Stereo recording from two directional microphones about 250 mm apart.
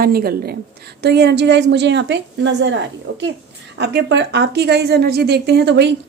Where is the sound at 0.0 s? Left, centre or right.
Right.